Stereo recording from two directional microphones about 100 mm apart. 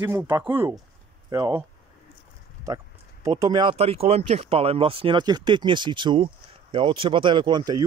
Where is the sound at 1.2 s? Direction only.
35° right (ahead or behind).